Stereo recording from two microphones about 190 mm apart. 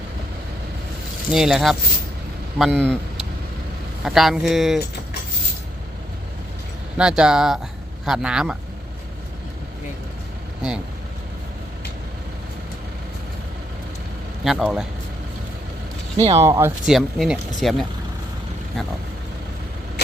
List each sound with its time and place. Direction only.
1.3 s speech: 5° right (ahead or behind)
6.9 s speech: 5° right (ahead or behind)
14.4 s speech: centre (ahead or behind)
16.1 s speech: 35° right (ahead or behind)
16.4 s speech: 15° right (ahead or behind)